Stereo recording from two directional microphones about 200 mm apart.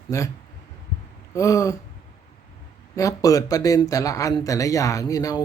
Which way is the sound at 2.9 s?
15° left (ahead or behind).